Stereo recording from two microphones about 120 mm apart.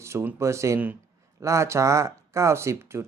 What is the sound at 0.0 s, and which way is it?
Speech, 25° right (ahead or behind).